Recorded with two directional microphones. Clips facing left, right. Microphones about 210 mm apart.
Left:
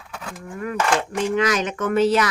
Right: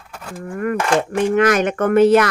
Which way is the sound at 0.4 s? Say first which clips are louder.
Right 4 dB; 55° right (ahead or behind).